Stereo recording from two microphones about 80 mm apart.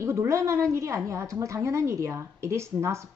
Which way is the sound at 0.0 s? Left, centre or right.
Right.